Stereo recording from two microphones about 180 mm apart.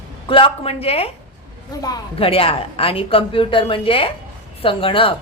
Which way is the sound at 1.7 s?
20° left (ahead or behind).